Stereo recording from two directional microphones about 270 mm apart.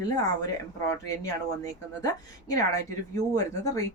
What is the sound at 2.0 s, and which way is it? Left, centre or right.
Speech, centre.